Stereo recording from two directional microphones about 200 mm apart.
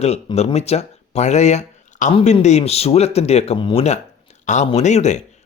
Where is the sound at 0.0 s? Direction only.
30° left (ahead or behind).